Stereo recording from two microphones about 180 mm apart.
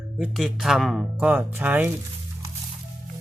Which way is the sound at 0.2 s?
Centre (ahead or behind).